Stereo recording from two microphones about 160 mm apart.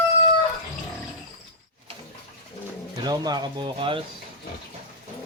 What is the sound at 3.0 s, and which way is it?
Speech, 25° right (ahead or behind).